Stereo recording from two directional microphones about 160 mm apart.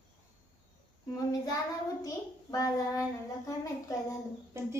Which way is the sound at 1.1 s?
25° left (ahead or behind).